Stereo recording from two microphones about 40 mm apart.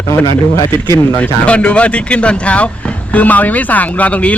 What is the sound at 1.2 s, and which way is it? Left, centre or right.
Speech, left.